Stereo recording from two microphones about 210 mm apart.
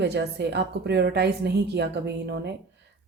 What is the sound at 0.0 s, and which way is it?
Speech, 50° right (ahead or behind).